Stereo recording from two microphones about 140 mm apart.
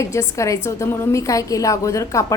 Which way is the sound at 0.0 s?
20° left (ahead or behind).